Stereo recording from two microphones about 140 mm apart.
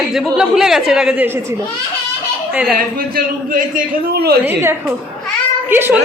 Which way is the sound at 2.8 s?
85° right.